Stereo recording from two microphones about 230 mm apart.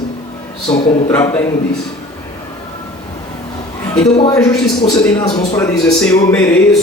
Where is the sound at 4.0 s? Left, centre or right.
Centre.